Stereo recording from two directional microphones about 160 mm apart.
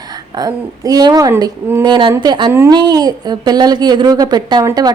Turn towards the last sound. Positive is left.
turn(degrees=-25)  # may be behind; listen again after turning